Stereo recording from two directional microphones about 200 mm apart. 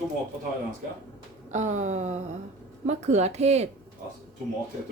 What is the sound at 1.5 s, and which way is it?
Speech, 35° right (ahead or behind).